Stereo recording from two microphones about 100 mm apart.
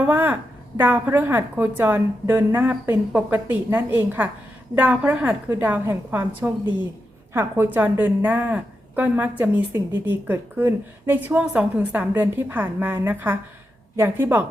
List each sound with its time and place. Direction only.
0.0 s a woman's voice: 20° right (ahead or behind)